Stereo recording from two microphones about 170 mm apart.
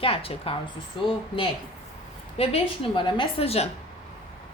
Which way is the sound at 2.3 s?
35° left (ahead or behind).